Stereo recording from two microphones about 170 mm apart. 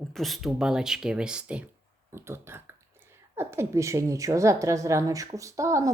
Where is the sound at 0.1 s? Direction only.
Centre (ahead or behind).